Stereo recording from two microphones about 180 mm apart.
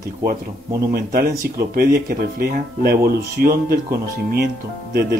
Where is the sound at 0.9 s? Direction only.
60° right (ahead or behind).